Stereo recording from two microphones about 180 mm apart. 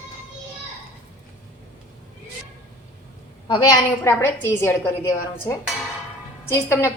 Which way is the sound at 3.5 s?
20° left (ahead or behind).